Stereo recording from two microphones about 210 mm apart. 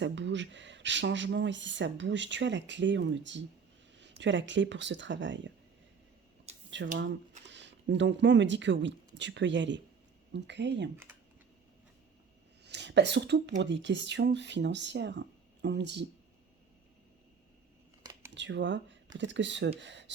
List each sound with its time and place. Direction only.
0.0 s speech: 60° right (ahead or behind)
6.5 s a sound: 30° right (ahead or behind)
7.0 s speech: 55° right (ahead or behind)
10.9 s speech: 10° right (ahead or behind)
12.6 s speech: 55° right (ahead or behind)
18.3 s speech: 55° right (ahead or behind)